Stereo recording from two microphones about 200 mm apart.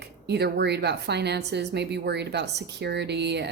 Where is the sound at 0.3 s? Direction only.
55° right (ahead or behind).